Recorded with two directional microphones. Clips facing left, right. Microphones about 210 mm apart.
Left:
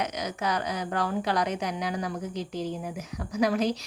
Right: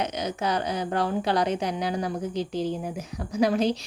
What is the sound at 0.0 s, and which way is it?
Speech, 30° right (ahead or behind).